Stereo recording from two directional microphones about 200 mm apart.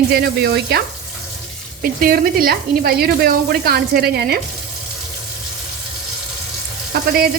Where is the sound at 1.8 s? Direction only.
45° right (ahead or behind).